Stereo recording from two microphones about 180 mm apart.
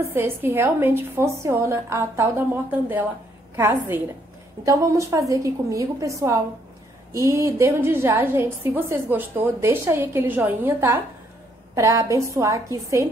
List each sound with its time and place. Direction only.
0.1 s a woman's voice: 10° right (ahead or behind)